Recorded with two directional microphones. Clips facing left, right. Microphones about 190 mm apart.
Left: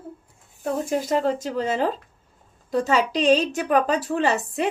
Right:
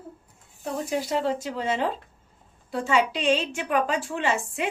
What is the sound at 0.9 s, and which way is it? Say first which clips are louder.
A woman's voice: left 3 dB; 45° left (ahead or behind).